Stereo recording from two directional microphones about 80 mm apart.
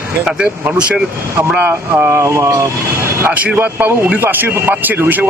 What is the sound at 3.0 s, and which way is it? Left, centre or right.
Speech, right.